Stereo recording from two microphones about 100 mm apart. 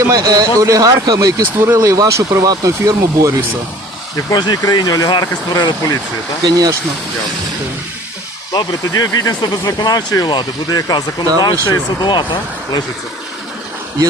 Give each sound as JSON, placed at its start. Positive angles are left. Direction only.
{"t": 0.0, "sound": "speech", "side_deg": -35}
{"t": 1.4, "sound": "speech", "side_deg": -25}
{"t": 4.3, "sound": "speech", "side_deg": 45}
{"t": 6.4, "sound": "speech", "side_deg": -40}
{"t": 8.5, "sound": "speech", "side_deg": 40}